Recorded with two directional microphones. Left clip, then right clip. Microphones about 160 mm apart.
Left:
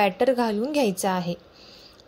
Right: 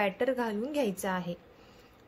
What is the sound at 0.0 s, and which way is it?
Speech, 30° left (ahead or behind).